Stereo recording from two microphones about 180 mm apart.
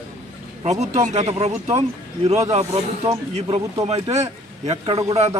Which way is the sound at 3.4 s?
35° right (ahead or behind).